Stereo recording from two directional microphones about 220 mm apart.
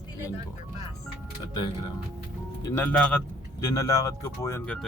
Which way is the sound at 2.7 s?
5° left (ahead or behind).